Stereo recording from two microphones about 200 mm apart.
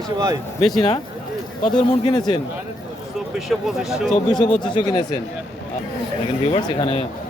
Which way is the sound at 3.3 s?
Centre (ahead or behind).